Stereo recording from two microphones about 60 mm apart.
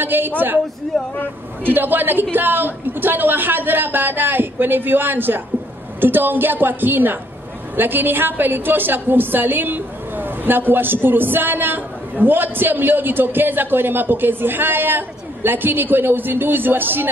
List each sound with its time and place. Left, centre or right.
0.0 s a woman's voice: right
0.9 s speech: centre
1.6 s a woman's voice: right